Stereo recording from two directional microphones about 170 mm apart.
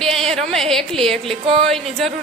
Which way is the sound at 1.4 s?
30° right (ahead or behind).